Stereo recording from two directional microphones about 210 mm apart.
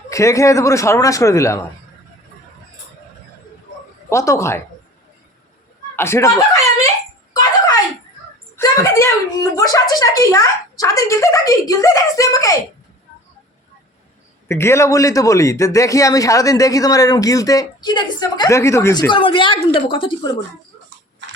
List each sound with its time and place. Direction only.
0.1 s a man's voice: 15° left (ahead or behind)
4.1 s a man's voice: 15° left (ahead or behind)
6.0 s a man's voice: 10° left (ahead or behind)
8.5 s a man's voice: 15° left (ahead or behind)
14.4 s a man's voice: 10° left (ahead or behind)
19.1 s a woman's voice: 25° left (ahead or behind)